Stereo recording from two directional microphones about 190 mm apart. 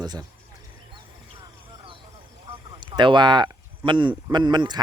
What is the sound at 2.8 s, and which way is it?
Speech, 25° right (ahead or behind).